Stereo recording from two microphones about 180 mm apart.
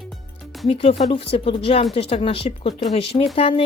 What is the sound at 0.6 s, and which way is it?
A woman's voice, 35° left (ahead or behind).